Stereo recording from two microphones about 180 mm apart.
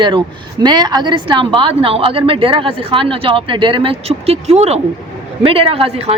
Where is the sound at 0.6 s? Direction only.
25° right (ahead or behind).